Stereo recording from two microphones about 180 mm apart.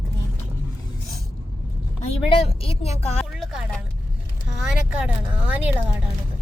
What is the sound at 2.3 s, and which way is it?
Speech, 30° left (ahead or behind).